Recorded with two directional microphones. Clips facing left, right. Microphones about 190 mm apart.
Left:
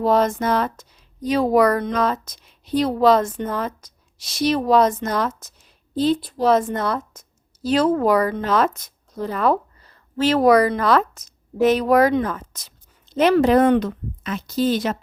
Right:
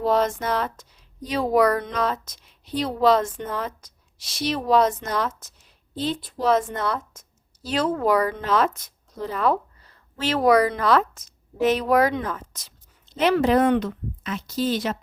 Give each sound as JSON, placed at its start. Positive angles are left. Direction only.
{"t": 0.0, "sound": "a woman's voice", "side_deg": 45}